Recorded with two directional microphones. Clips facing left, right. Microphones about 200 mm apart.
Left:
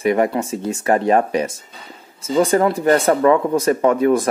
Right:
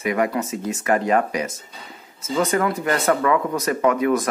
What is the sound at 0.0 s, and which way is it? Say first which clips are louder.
Speech: left 5 dB; 30° left (ahead or behind).